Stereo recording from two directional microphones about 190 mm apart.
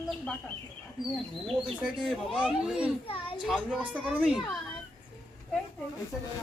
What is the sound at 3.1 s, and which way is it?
Speech, 30° left (ahead or behind).